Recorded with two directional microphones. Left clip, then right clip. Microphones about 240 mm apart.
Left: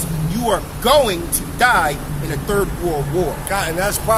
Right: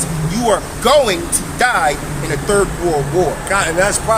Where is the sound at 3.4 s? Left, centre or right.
Left.